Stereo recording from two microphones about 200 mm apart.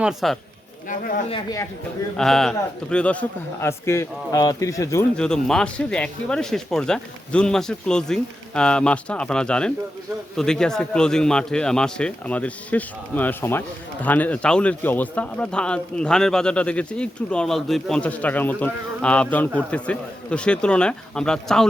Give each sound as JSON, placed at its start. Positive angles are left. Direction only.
{"t": 0.0, "sound": "speech", "side_deg": 0}
{"t": 0.9, "sound": "speech", "side_deg": 45}
{"t": 1.3, "sound": "speech", "side_deg": 20}
{"t": 2.1, "sound": "a man's voice", "side_deg": 0}
{"t": 5.1, "sound": "speech", "side_deg": 5}